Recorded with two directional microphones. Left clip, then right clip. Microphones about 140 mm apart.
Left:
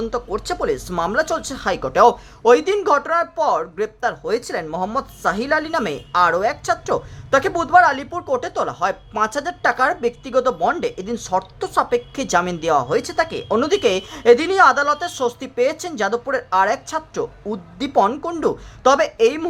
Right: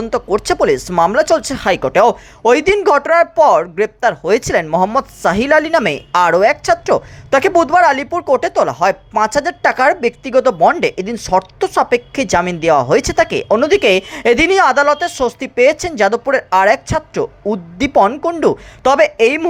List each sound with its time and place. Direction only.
0.1 s speech: 30° right (ahead or behind)